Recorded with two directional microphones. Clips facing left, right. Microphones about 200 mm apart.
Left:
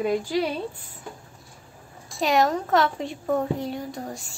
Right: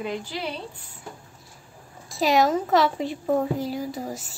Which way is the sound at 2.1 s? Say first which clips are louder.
Right 1 dB; centre (ahead or behind).